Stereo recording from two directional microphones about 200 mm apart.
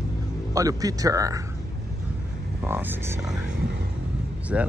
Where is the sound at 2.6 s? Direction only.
10° right (ahead or behind).